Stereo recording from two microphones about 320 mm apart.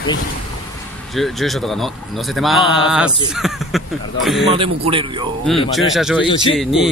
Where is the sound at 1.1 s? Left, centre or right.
Centre.